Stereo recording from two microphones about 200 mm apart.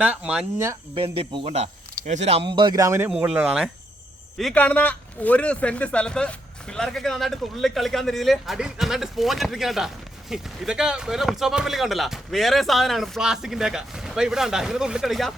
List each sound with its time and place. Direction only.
0.0 s a man's voice: 5° right (ahead or behind)
0.9 s a man's voice: 25° right (ahead or behind); by 15.4 s centre (ahead or behind)